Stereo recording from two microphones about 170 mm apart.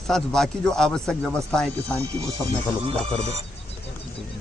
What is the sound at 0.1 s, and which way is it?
Speech, 5° left (ahead or behind).